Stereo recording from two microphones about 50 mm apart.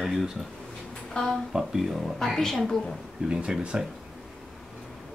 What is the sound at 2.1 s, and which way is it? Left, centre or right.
Speech, centre.